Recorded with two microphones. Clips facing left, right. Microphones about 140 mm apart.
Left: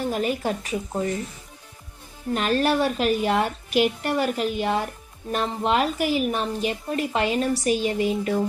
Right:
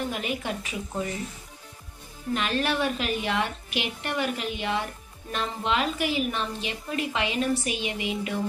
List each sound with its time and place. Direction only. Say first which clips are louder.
0.1 s a woman's voice: left 6 dB; 40° left (ahead or behind)
2.3 s a woman's voice: left 5 dB; 40° left (ahead or behind)